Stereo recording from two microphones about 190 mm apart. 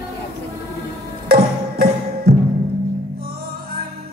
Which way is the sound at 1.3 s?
55° right (ahead or behind).